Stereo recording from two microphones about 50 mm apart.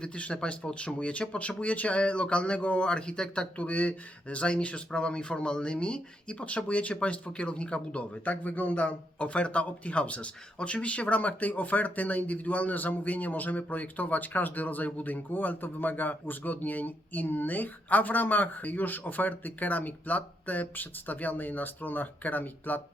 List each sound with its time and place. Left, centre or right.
0.0 s speech: left
3.6 s speech: left